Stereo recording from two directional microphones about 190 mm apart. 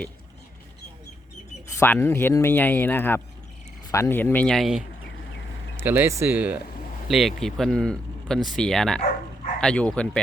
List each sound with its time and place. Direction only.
1.8 s speech: 15° left (ahead or behind)
5.7 s speech: 10° right (ahead or behind); by 10.1 s 5° left (ahead or behind)